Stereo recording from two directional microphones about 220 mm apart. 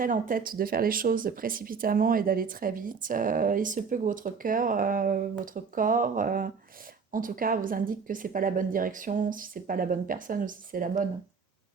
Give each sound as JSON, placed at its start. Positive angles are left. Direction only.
{"t": 0.0, "sound": "speech", "side_deg": -40}